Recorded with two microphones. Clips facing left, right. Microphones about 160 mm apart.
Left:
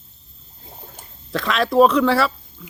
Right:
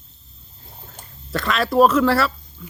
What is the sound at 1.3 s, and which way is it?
Speech, centre (ahead or behind).